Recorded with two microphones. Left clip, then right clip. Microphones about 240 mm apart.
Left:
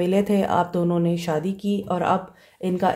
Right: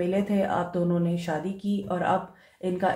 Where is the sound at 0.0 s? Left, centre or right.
Left.